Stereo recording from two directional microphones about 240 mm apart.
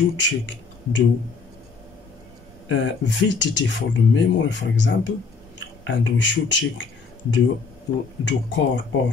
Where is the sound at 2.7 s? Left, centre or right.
Left.